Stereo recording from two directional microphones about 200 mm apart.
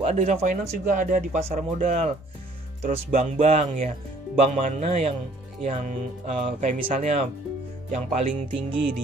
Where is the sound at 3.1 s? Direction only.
35° right (ahead or behind).